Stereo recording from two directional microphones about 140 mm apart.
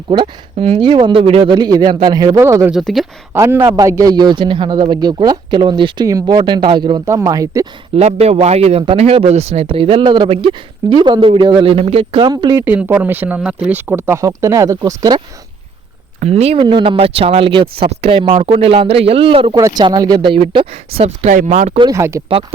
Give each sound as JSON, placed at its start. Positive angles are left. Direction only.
{"t": 0.1, "sound": "speech", "side_deg": -45}
{"t": 2.4, "sound": "a man's voice", "side_deg": -20}
{"t": 2.7, "sound": "speech", "side_deg": 0}
{"t": 3.3, "sound": "a man's voice", "side_deg": -20}
{"t": 7.0, "sound": "a man's voice", "side_deg": -20}
{"t": 7.9, "sound": "speech", "side_deg": -50}
{"t": 12.3, "sound": "a man's voice", "side_deg": -30}
{"t": 12.6, "sound": "a man's voice", "side_deg": -10}
{"t": 16.2, "sound": "speech", "side_deg": -50}
{"t": 19.5, "sound": "speech", "side_deg": -30}
{"t": 21.8, "sound": "a man's voice", "side_deg": -25}